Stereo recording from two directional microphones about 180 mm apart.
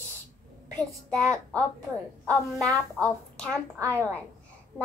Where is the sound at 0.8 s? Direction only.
15° right (ahead or behind).